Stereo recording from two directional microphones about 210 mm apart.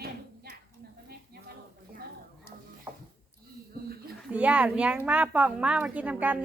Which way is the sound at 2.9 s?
10° right (ahead or behind).